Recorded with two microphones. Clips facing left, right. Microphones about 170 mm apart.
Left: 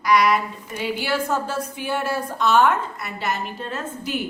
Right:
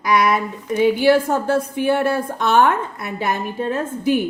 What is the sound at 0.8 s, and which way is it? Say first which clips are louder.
A woman's voice: right 10 dB; 50° right (ahead or behind).